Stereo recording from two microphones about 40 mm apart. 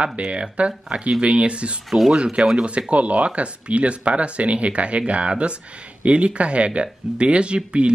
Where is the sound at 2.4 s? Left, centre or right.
Right.